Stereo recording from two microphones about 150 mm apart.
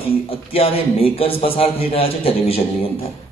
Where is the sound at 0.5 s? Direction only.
40° left (ahead or behind).